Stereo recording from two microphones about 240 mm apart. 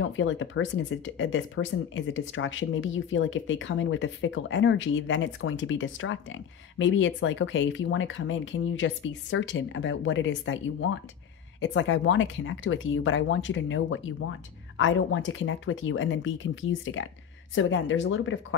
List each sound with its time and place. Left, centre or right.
0.0 s speech: left